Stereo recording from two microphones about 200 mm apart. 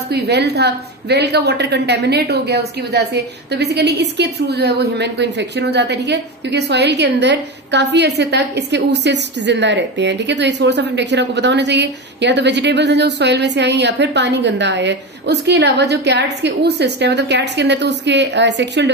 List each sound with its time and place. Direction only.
0.1 s a woman's voice: 55° right (ahead or behind)